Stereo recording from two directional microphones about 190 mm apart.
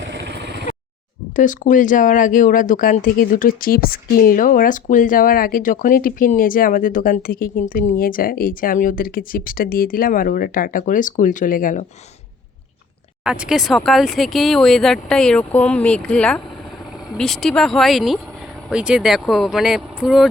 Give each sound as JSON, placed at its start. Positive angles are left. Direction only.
{"t": 0.3, "sound": "vehicle", "side_deg": -65}
{"t": 1.4, "sound": "speech", "side_deg": 45}
{"t": 13.2, "sound": "speech", "side_deg": -5}